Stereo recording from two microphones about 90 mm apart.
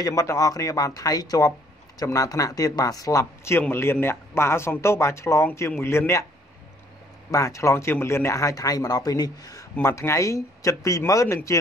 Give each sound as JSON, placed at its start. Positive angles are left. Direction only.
{"t": 0.0, "sound": "a man's voice", "side_deg": 40}
{"t": 3.7, "sound": "speech", "side_deg": 25}
{"t": 7.2, "sound": "a man's voice", "side_deg": 35}
{"t": 9.8, "sound": "a man's voice", "side_deg": 30}